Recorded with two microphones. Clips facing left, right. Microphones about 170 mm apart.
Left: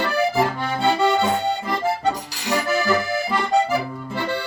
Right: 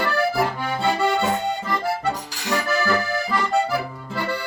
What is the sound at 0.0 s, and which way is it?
Accordion, 20° left (ahead or behind).